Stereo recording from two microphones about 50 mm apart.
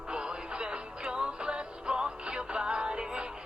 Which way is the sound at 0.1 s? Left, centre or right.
Centre.